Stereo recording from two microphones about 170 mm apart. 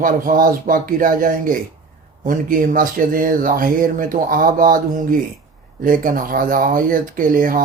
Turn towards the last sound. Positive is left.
turn(degrees=-55)  # may be behind; listen again after turning